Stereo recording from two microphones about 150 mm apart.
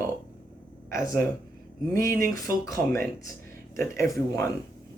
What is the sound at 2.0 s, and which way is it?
Speech, 70° right (ahead or behind).